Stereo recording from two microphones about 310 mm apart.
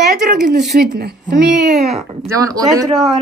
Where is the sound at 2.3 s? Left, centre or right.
Centre.